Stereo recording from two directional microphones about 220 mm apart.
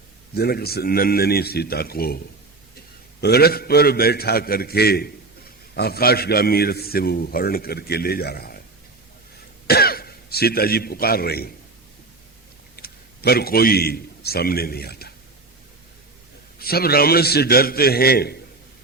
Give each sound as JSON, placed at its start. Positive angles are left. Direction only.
{"t": 0.3, "sound": "a man's voice", "side_deg": 45}
{"t": 9.6, "sound": "a man's voice", "side_deg": 45}
{"t": 12.7, "sound": "a man's voice", "side_deg": 45}
{"t": 16.6, "sound": "a man's voice", "side_deg": 45}